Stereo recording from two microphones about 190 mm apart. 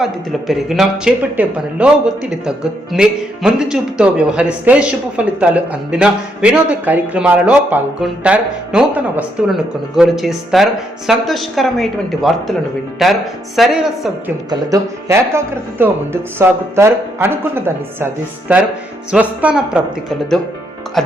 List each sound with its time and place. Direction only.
0.0 s speech: centre (ahead or behind)
14.7 s speech: 15° right (ahead or behind)
16.4 s speech: 15° right (ahead or behind)